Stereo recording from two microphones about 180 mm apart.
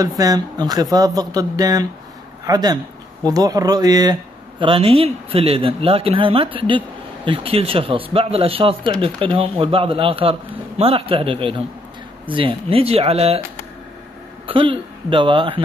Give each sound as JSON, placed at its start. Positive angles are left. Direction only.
{"t": 0.0, "sound": "speech", "side_deg": -20}
{"t": 14.4, "sound": "speech", "side_deg": -30}